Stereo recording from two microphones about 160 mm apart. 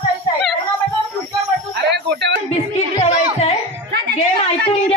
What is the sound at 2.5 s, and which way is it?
Music, 45° left (ahead or behind).